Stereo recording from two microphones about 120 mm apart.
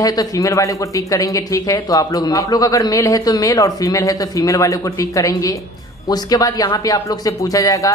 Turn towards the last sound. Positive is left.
turn(degrees=25)  # may be behind; listen again after turning